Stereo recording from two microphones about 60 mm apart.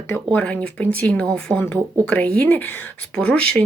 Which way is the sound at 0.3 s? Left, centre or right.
Left.